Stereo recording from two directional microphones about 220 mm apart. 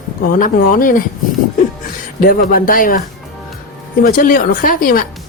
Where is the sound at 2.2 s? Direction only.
40° left (ahead or behind).